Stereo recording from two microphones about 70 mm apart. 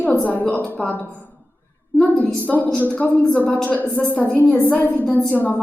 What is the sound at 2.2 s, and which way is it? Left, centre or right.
A woman's voice, left.